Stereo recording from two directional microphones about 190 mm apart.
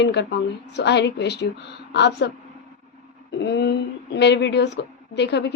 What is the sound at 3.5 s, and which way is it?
A woman's voice, 60° left (ahead or behind).